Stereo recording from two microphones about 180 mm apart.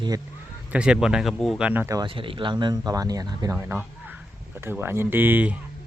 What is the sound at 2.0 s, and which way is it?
Speech, 30° right (ahead or behind).